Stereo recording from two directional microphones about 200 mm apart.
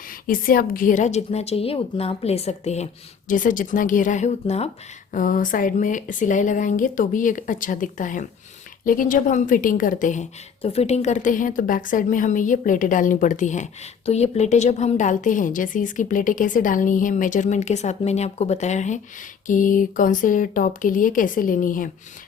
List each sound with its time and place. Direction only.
0.3 s a woman's voice: 45° left (ahead or behind)